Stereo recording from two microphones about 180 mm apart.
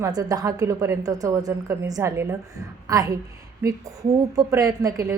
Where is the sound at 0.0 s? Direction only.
20° right (ahead or behind).